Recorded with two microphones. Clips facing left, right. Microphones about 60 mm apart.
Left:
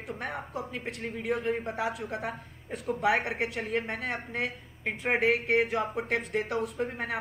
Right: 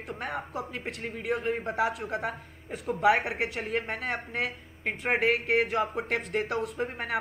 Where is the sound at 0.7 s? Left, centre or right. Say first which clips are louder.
Even; right.